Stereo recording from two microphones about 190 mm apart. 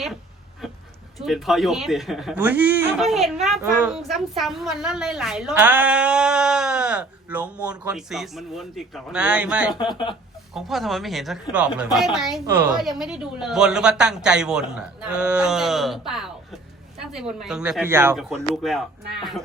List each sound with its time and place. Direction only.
0.6 s a sound: centre (ahead or behind)
1.2 s a woman's voice: centre (ahead or behind)
9.7 s speech: 25° left (ahead or behind)
10.5 s a woman's voice: centre (ahead or behind)
12.5 s a woman's voice: 15° right (ahead or behind)
12.8 s a woman's voice: centre (ahead or behind)
18.6 s a woman's voice: centre (ahead or behind)